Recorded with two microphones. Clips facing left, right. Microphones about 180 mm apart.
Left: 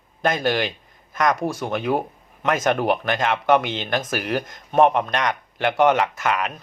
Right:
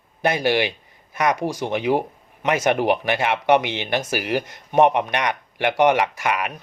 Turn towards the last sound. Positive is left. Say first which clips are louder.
# even
turn(degrees=-10)  # may be behind; listen again after turning